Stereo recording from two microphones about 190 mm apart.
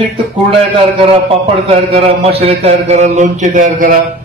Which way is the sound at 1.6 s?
30° right (ahead or behind).